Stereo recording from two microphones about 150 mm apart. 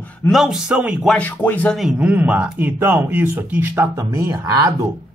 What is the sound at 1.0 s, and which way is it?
Speech, 10° left (ahead or behind).